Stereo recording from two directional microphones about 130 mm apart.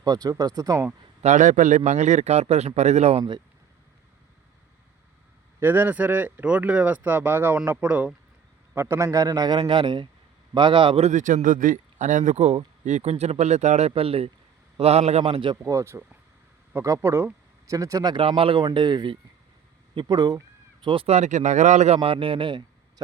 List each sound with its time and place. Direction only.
0.0 s speech: 30° right (ahead or behind)
1.2 s speech: 70° right (ahead or behind); by 3.2 s 55° right (ahead or behind)
5.5 s a man's voice: 15° right (ahead or behind); by 11.1 s 45° right (ahead or behind)
11.1 s a man's voice: 75° right (ahead or behind); by 15.5 s 40° right (ahead or behind)
15.5 s speech: 25° right (ahead or behind)
18.2 s a man's voice: 45° right (ahead or behind)
20.8 s a man's voice: 45° right (ahead or behind)
21.2 s speech: 65° right (ahead or behind); by 22.6 s 40° right (ahead or behind)